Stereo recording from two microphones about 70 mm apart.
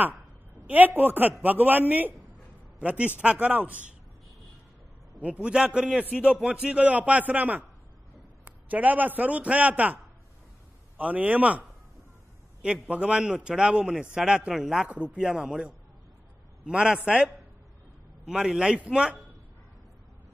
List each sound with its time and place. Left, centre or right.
0.7 s a man's voice: right
5.2 s a man's voice: centre
11.0 s a man's voice: right
12.6 s a man's voice: centre
16.6 s a man's voice: centre